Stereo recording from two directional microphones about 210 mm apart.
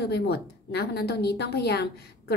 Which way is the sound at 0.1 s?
50° left (ahead or behind).